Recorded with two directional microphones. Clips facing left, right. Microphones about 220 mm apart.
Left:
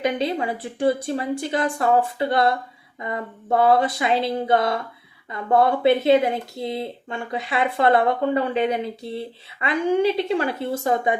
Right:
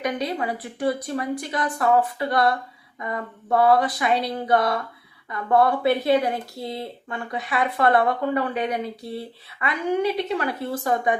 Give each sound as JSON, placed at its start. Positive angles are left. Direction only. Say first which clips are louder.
{"t": 0.0, "sound": "speech", "louder": "left 3 dB", "side_deg": 25}